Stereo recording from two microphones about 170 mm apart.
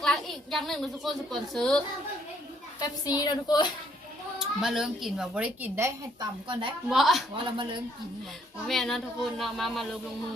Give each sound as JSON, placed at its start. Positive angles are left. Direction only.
{"t": 0.0, "sound": "a woman's voice", "side_deg": 0}
{"t": 2.8, "sound": "a woman's voice", "side_deg": 25}
{"t": 4.4, "sound": "a woman's voice", "side_deg": 0}
{"t": 6.5, "sound": "speech", "side_deg": -30}
{"t": 6.9, "sound": "a woman's voice", "side_deg": 0}
{"t": 7.3, "sound": "speech", "side_deg": -30}
{"t": 8.6, "sound": "a woman's voice", "side_deg": 0}